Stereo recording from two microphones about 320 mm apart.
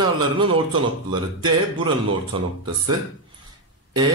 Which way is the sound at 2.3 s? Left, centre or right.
Centre.